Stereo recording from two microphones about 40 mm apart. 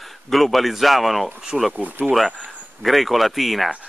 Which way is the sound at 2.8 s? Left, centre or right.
Centre.